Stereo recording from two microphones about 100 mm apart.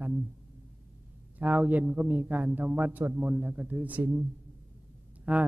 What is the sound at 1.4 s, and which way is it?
Speech, 15° right (ahead or behind).